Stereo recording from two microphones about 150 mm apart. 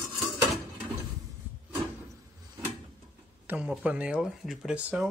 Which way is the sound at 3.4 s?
10° right (ahead or behind).